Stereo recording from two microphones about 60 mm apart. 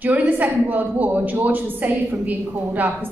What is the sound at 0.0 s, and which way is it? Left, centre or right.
A woman's voice, right.